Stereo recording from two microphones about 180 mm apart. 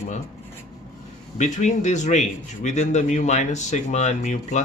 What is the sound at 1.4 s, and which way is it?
A man's voice, 40° left (ahead or behind).